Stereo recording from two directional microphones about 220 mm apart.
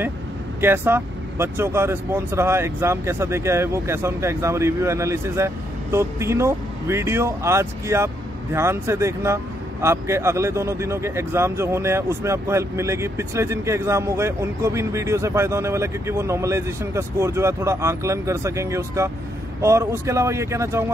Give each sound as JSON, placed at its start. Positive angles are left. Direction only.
{"t": 0.6, "sound": "speech", "side_deg": -10}